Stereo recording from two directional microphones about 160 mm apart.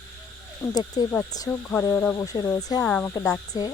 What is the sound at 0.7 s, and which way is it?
Speech, 25° left (ahead or behind).